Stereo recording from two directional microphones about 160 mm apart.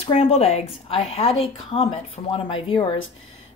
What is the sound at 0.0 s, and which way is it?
Speech, 35° left (ahead or behind).